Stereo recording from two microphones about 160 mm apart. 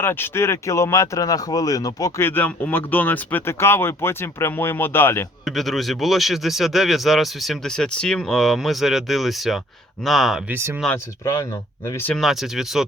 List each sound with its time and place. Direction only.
0.0 s speech: 15° left (ahead or behind)
5.5 s speech: centre (ahead or behind)
10.9 s speech: 15° left (ahead or behind)
12.0 s speech: centre (ahead or behind)